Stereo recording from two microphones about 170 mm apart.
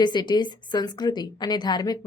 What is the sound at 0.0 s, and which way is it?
A woman's voice, 25° left (ahead or behind).